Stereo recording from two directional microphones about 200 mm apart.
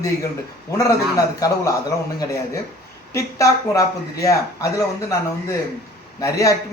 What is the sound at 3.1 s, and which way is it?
A man's voice, 15° left (ahead or behind).